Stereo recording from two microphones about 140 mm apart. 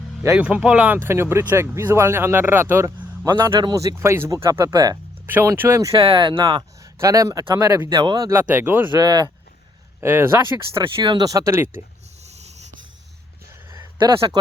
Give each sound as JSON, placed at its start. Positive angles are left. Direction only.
{"t": 0.3, "sound": "speech", "side_deg": -10}
{"t": 3.5, "sound": "speech", "side_deg": -30}
{"t": 5.2, "sound": "speech", "side_deg": -15}
{"t": 6.0, "sound": "speech", "side_deg": -35}
{"t": 8.3, "sound": "speech", "side_deg": -15}
{"t": 8.9, "sound": "speech", "side_deg": -30}
{"t": 10.0, "sound": "speech", "side_deg": -15}
{"t": 10.8, "sound": "speech", "side_deg": -35}
{"t": 12.2, "sound": "wheeze", "side_deg": -50}
{"t": 13.5, "sound": "a sound", "side_deg": -20}